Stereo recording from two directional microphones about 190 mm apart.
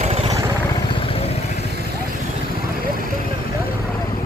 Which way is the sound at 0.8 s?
30° left (ahead or behind).